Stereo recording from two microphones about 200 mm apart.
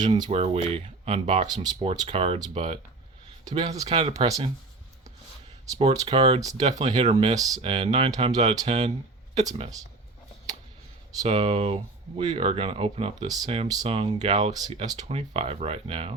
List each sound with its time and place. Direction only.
0.0 s speech: 20° right (ahead or behind)
5.9 s speech: 20° right (ahead or behind)
7.0 s speech: 30° right (ahead or behind)
11.3 s speech: 25° right (ahead or behind)